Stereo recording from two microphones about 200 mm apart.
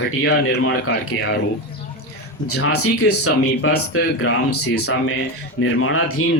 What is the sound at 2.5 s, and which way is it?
Speech, 90° left.